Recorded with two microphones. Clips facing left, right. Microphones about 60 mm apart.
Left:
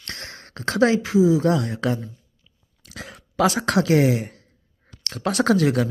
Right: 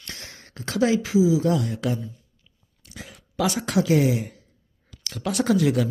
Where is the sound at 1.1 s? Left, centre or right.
Left.